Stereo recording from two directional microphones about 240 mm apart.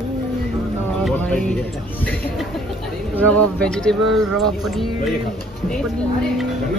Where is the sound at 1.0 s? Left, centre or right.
Centre.